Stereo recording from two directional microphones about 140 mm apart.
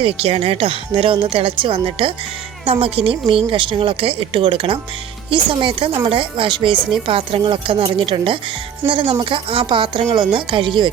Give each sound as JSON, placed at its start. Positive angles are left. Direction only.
{"t": 0.0, "sound": "speech", "side_deg": -40}